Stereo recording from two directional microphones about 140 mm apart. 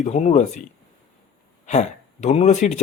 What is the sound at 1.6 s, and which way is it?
Speech, 55° left (ahead or behind).